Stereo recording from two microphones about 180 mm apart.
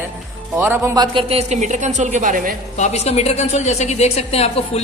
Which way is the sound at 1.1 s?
35° right (ahead or behind).